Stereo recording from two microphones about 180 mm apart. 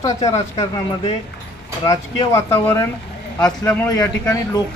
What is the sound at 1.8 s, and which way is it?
Speech, 15° left (ahead or behind).